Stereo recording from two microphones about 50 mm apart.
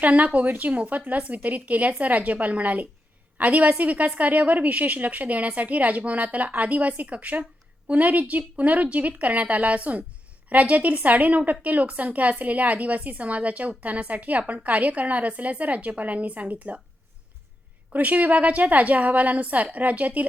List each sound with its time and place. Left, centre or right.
0.0 s a woman's voice: right
17.9 s a woman's voice: right